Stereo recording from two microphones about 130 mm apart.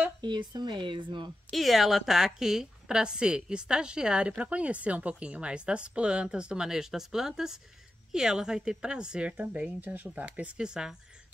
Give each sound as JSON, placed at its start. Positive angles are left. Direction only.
{"t": 0.2, "sound": "speech", "side_deg": -35}
{"t": 1.5, "sound": "a woman's voice", "side_deg": 0}